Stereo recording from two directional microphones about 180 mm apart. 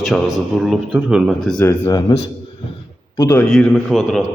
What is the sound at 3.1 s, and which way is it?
Speech, 15° left (ahead or behind).